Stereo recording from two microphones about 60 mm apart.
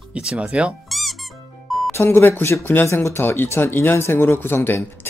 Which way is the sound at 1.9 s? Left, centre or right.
Left.